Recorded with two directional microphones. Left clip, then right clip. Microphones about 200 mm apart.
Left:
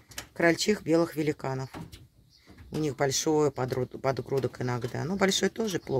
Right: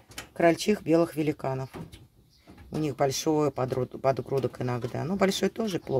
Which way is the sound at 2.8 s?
Centre (ahead or behind).